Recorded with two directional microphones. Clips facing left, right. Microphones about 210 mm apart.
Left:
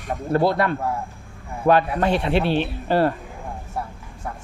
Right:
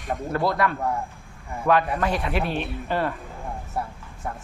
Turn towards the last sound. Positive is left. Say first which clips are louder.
# left 6 dB
turn(degrees=35)  # may be behind; listen again after turning